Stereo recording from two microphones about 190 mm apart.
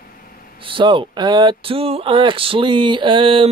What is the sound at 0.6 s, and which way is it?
Speech, 25° right (ahead or behind).